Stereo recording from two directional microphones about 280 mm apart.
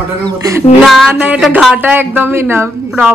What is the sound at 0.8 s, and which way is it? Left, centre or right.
Speech, centre.